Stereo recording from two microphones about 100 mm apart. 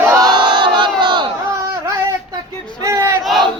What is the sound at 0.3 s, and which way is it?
Crowd, 50° right (ahead or behind).